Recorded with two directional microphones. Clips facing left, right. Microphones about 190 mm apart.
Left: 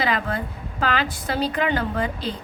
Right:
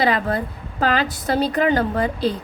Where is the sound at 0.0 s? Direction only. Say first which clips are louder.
Right 4 dB; 35° right (ahead or behind).